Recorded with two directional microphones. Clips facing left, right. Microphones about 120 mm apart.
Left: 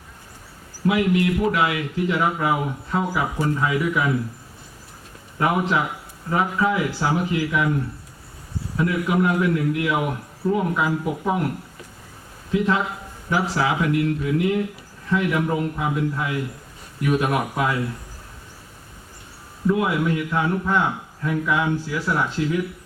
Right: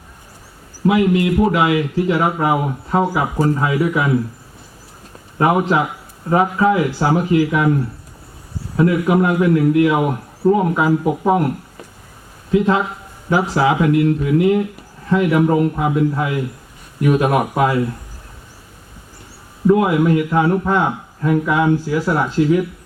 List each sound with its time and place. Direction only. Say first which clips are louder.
0.9 s a man's voice: right 5 dB; 35° right (ahead or behind)
5.4 s a man's voice: right 6 dB; 40° right (ahead or behind)
8.7 s a man's voice: right 7 dB; 40° right (ahead or behind)
12.5 s a man's voice: right 5 dB; 40° right (ahead or behind)
19.6 s a man's voice: right 7 dB; 45° right (ahead or behind)